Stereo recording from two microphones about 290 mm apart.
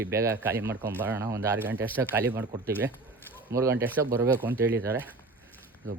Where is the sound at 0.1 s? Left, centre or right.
Centre.